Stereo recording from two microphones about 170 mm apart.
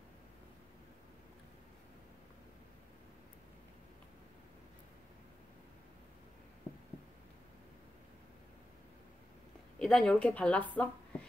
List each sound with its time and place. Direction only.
9.8 s a woman's voice: 5° left (ahead or behind)